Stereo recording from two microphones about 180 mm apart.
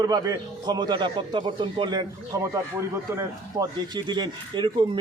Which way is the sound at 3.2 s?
20° right (ahead or behind).